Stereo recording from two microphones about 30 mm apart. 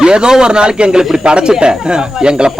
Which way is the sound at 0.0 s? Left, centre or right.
Right.